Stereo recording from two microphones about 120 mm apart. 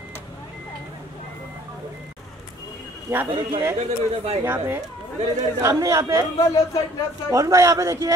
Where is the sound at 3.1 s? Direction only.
25° right (ahead or behind).